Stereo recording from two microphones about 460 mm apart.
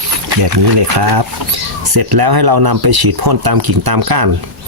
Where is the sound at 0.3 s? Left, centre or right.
Right.